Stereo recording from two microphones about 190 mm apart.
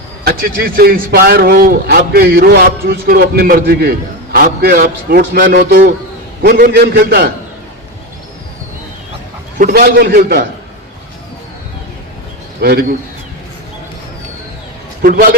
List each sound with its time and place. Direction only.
0.3 s a man's voice: 50° right (ahead or behind)
9.6 s a man's voice: 55° right (ahead or behind)
12.5 s a man's voice: 55° right (ahead or behind)
15.0 s a man's voice: 50° right (ahead or behind)